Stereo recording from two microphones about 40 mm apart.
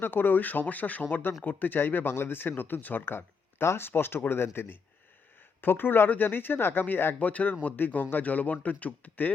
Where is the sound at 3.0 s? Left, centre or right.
Left.